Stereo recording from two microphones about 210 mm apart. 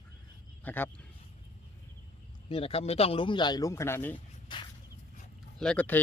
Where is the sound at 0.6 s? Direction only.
10° left (ahead or behind).